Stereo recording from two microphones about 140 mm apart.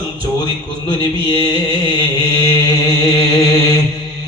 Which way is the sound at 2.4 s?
25° left (ahead or behind).